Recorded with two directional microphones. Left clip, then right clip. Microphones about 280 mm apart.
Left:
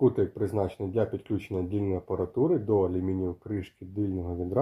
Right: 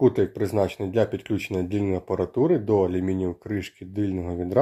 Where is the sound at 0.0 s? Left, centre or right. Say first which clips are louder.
Right 4 dB; right.